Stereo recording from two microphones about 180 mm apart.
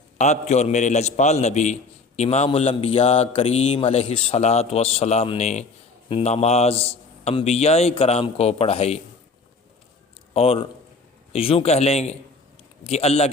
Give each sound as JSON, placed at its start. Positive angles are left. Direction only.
{"t": 0.2, "sound": "a man's voice", "side_deg": 40}
{"t": 10.3, "sound": "a man's voice", "side_deg": 35}